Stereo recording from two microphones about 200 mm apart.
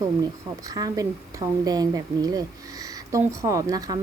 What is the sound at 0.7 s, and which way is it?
A woman's voice, 20° right (ahead or behind).